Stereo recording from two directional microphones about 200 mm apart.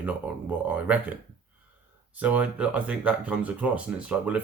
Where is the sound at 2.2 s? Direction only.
5° right (ahead or behind).